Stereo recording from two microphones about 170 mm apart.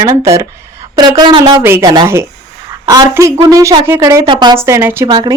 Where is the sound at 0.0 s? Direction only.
20° right (ahead or behind).